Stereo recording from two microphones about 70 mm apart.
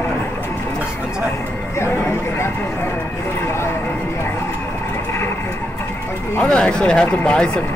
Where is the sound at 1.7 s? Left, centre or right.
Left.